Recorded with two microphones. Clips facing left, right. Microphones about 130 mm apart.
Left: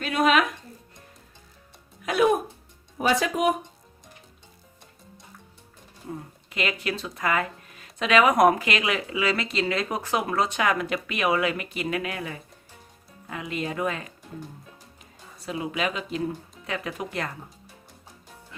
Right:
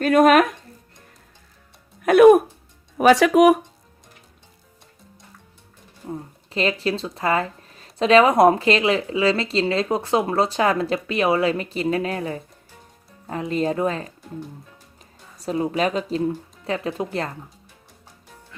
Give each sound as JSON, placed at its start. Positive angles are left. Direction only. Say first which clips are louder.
{"t": 0.0, "sound": "speech", "louder": "right 7 dB", "side_deg": -50}
{"t": 2.0, "sound": "speech", "louder": "right 11 dB", "side_deg": -55}
{"t": 3.0, "sound": "speech", "louder": "right 10 dB", "side_deg": -75}
{"t": 6.5, "sound": "speech", "louder": "right 6 dB", "side_deg": -30}
{"t": 15.4, "sound": "speech", "louder": "right 7 dB", "side_deg": -40}